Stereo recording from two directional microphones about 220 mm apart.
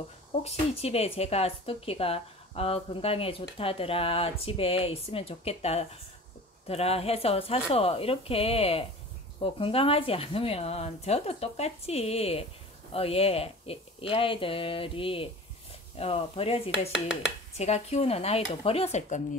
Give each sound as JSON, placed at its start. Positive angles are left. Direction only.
{"t": 0.4, "sound": "speech", "side_deg": 30}